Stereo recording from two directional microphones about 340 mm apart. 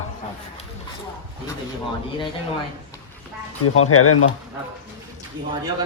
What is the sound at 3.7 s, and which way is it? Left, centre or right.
Speech, left.